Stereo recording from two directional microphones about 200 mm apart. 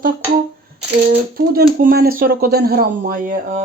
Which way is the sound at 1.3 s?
45° right (ahead or behind).